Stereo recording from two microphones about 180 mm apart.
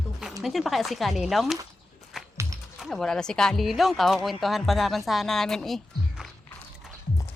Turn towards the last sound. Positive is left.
turn(degrees=0)  # may be behind; listen again after turning